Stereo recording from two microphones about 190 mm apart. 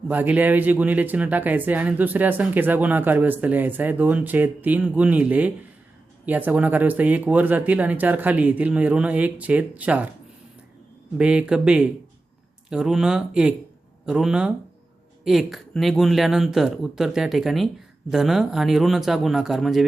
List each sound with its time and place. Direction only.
0.1 s speech: 10° right (ahead or behind)
11.2 s speech: 5° right (ahead or behind)